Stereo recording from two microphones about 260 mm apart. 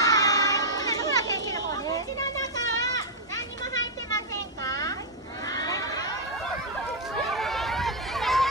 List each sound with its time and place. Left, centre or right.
0.0 s a sound: centre
4.6 s vehicle: centre
5.5 s crowd: centre
7.2 s run: centre